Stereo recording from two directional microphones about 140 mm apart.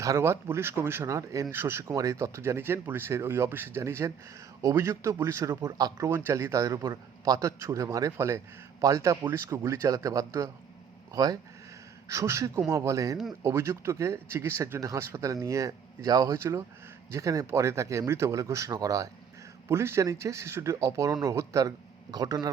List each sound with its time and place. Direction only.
0.0 s speech: 20° right (ahead or behind)